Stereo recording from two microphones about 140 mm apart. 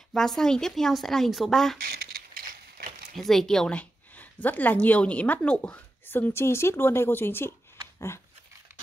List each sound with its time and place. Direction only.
0.1 s speech: 5° left (ahead or behind)
1.9 s mechanisms: 90° right
3.2 s speech: centre (ahead or behind)